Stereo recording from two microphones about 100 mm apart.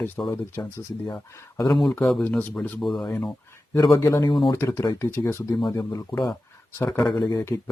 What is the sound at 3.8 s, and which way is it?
Speech, 30° left (ahead or behind).